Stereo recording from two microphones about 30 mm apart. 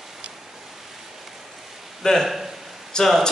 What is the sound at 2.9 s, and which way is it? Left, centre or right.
Speech, left.